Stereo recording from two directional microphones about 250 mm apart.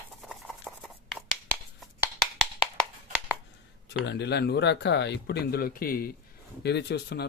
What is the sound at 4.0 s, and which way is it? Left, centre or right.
Speech, left.